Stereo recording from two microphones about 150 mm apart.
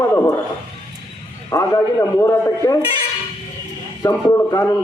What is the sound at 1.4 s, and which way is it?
A man's voice, 20° left (ahead or behind).